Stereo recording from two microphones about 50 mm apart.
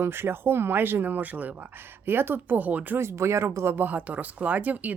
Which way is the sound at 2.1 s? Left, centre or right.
Right.